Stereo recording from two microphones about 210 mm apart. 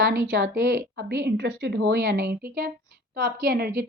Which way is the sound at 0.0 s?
50° right (ahead or behind).